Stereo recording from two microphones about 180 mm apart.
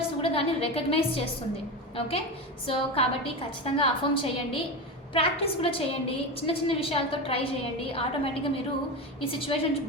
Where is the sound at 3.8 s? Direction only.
30° left (ahead or behind).